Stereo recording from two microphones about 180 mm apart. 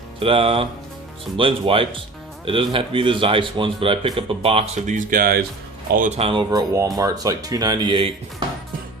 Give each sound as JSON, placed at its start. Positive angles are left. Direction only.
{"t": 0.2, "sound": "speech", "side_deg": -30}
{"t": 6.1, "sound": "speech", "side_deg": -30}
{"t": 6.5, "sound": "speech", "side_deg": -20}